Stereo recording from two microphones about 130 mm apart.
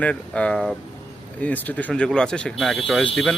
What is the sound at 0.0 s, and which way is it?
Speech, 10° left (ahead or behind).